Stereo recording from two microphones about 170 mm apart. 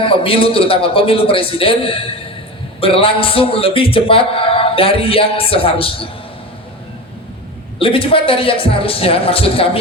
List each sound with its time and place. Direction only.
0.0 s a man's voice: 30° left (ahead or behind)
7.8 s a man's voice: 30° left (ahead or behind)